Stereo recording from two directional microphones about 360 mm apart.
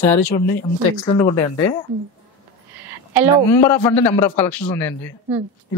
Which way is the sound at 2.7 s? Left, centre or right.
Centre.